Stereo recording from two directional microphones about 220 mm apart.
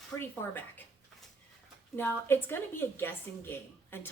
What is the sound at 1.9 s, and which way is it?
A woman's voice, 10° left (ahead or behind).